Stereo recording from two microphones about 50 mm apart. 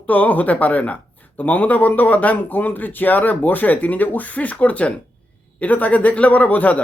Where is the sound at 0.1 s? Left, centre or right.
Left.